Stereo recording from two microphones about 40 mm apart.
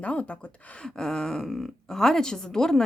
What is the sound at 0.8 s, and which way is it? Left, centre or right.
Speech, centre.